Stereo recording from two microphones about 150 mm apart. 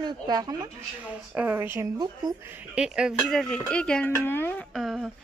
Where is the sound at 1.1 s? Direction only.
10° right (ahead or behind).